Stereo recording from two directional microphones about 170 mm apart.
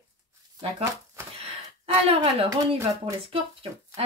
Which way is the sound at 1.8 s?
35° right (ahead or behind).